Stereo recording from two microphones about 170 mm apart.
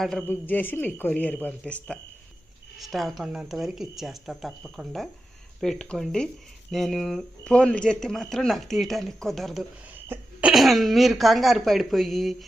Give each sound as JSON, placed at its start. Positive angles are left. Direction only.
{"t": 0.0, "sound": "speech", "side_deg": 0}
{"t": 5.5, "sound": "speech", "side_deg": 5}